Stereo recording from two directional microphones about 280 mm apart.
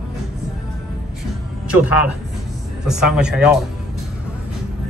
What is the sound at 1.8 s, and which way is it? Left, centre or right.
Speech, left.